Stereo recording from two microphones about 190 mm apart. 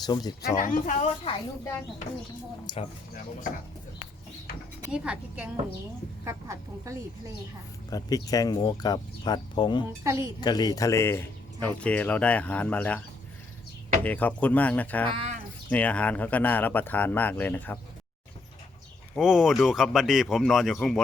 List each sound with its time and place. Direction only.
0.0 s speech: 20° left (ahead or behind)
0.5 s speech: 45° left (ahead or behind)
2.6 s speech: 30° left (ahead or behind)
4.9 s a woman's voice: 5° right (ahead or behind)
7.9 s speech: 20° left (ahead or behind)
10.0 s a woman's voice: 15° right (ahead or behind)
10.4 s a man's voice: 20° left (ahead or behind)
14.0 s a man's voice: 10° left (ahead or behind)
15.1 s speech: 30° right (ahead or behind)
15.7 s a man's voice: 10° left (ahead or behind)
19.1 s speech: centre (ahead or behind)